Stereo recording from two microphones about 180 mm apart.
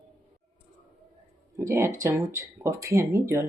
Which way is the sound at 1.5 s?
15° right (ahead or behind).